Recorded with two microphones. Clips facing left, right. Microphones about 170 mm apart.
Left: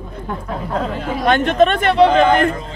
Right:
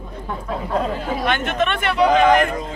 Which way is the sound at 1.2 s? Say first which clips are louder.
Left 9 dB; 35° left (ahead or behind).